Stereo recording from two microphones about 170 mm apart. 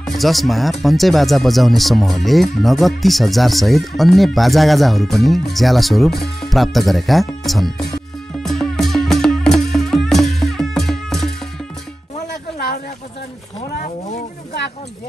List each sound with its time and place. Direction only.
0.0 s speech: centre (ahead or behind)
8.4 s music: 5° left (ahead or behind)
13.6 s a sound: 45° left (ahead or behind)